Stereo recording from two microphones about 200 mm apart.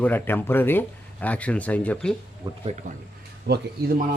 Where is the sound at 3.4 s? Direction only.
50° right (ahead or behind).